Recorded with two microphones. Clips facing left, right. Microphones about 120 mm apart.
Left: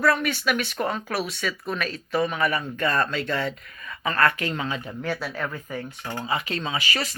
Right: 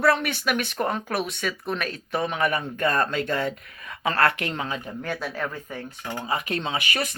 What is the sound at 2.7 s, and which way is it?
Speech, 45° right (ahead or behind).